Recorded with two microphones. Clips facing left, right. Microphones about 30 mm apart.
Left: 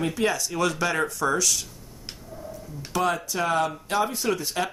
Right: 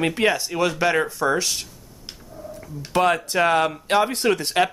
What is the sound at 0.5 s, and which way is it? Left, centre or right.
Speech, right.